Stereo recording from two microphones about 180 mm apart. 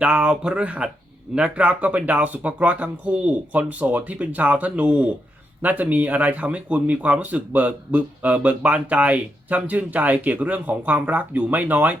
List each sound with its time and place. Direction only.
0.0 s a man's voice: 5° right (ahead or behind)